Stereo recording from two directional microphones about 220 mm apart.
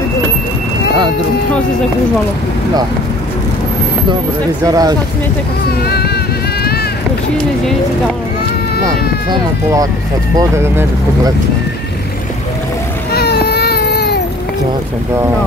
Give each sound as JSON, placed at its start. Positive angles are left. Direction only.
{"t": 4.6, "sound": "speech", "side_deg": -15}
{"t": 5.9, "sound": "vehicle", "side_deg": 45}
{"t": 8.8, "sound": "speech", "side_deg": -15}
{"t": 13.1, "sound": "baby cry", "side_deg": 45}